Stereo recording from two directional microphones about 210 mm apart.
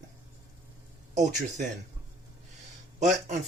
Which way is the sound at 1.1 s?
35° right (ahead or behind).